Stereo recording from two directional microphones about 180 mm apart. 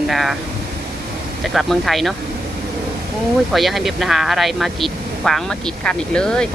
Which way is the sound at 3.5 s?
Centre (ahead or behind).